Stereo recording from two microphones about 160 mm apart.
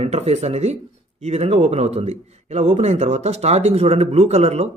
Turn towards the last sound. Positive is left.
turn(degrees=-40)  # may be behind; listen again after turning